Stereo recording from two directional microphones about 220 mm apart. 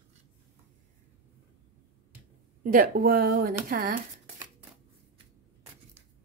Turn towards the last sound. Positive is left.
turn(degrees=-40)  # may be behind; listen again after turning